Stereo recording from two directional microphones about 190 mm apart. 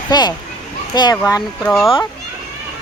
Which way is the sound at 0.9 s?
20° left (ahead or behind).